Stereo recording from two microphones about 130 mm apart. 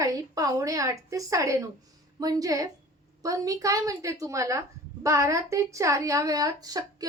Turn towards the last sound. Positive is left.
turn(degrees=-30)  # may be behind; listen again after turning